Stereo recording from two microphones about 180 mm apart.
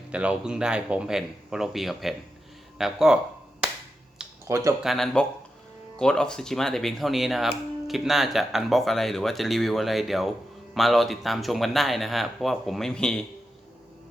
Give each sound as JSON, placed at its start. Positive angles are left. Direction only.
{"t": 0.1, "sound": "speech", "side_deg": -5}
{"t": 4.4, "sound": "speech", "side_deg": -15}
{"t": 4.8, "sound": "speech", "side_deg": 0}